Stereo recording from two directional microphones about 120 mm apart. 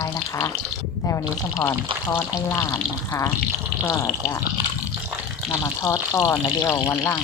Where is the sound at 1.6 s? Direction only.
15° left (ahead or behind).